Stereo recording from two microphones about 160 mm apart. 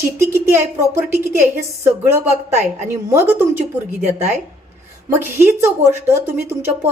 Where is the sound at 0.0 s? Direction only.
15° right (ahead or behind).